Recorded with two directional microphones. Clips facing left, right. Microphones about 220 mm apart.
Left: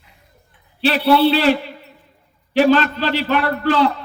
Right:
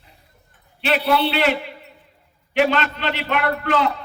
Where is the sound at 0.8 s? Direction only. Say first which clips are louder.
Left 5 dB; 35° left (ahead or behind).